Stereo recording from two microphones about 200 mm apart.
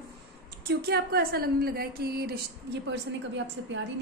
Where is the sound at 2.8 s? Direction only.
65° right (ahead or behind).